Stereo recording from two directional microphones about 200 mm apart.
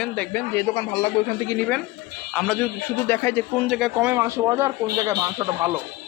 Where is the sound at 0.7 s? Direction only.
25° left (ahead or behind).